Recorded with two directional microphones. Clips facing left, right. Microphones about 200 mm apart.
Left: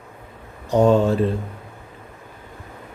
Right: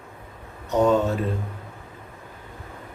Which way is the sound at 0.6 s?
30° left (ahead or behind).